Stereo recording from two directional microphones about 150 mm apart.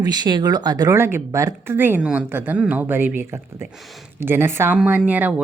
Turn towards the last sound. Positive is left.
turn(degrees=-10)  # may be behind; listen again after turning